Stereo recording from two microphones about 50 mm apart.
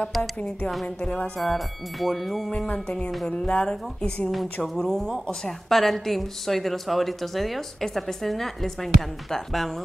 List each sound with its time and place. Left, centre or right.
1.0 s a woman's voice: left
1.4 s a woman's voice: centre
2.5 s a woman's voice: left; by 9.7 s centre